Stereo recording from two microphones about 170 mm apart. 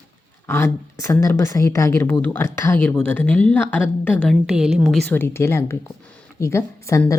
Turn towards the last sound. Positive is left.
turn(degrees=15)  # may be behind; listen again after turning